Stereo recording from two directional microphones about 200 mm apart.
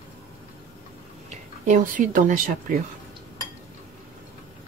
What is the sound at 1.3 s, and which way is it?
Speech, 40° right (ahead or behind).